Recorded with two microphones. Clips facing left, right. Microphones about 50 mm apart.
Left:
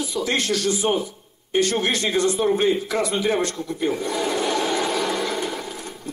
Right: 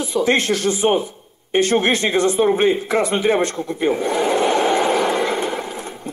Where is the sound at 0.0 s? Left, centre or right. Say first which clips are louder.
Right 6 dB; right.